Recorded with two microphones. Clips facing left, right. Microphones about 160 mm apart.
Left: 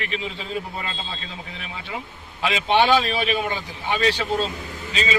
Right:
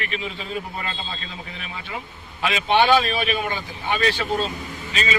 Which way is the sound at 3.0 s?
25° left (ahead or behind).